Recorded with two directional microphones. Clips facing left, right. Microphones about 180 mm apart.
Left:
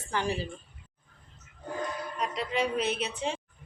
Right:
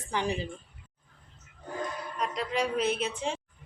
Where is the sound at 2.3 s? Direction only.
Centre (ahead or behind).